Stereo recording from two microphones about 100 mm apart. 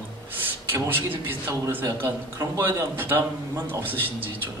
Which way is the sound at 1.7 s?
30° right (ahead or behind).